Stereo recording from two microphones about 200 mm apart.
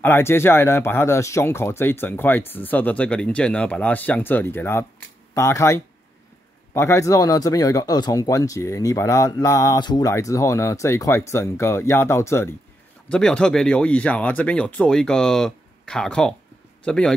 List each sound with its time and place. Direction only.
0.0 s speech: 10° left (ahead or behind)